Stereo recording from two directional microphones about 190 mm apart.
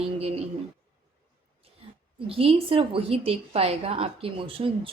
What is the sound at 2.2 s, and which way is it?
A woman's voice, 30° right (ahead or behind).